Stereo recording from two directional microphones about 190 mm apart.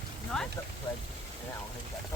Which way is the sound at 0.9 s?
20° left (ahead or behind).